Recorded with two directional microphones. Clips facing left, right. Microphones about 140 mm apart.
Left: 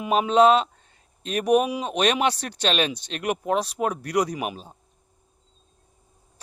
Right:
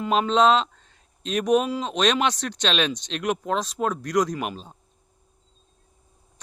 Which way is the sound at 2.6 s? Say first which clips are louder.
Left 1 dB; 50° left (ahead or behind).